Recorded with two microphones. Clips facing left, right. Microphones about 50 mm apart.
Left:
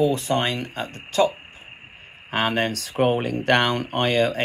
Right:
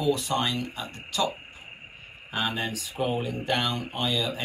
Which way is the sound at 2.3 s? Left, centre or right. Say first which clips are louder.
Left 7 dB; left.